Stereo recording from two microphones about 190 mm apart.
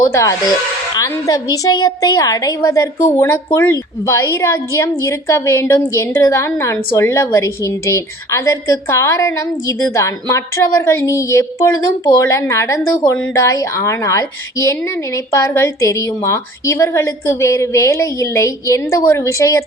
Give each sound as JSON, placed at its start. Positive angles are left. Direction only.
{"t": 0.0, "sound": "a woman's voice", "side_deg": 15}